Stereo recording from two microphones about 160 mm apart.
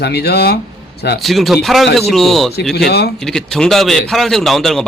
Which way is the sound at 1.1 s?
Centre (ahead or behind).